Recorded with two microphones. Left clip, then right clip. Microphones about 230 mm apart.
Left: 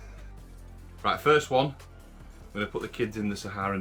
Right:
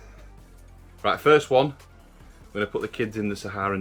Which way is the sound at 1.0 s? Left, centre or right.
Centre.